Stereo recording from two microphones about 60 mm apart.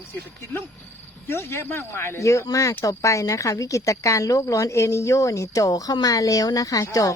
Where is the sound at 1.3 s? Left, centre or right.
Left.